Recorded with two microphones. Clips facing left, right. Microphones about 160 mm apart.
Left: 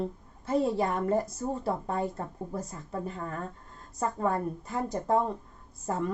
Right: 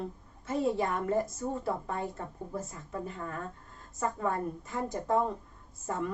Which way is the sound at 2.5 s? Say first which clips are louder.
Left 1 dB; 40° left (ahead or behind).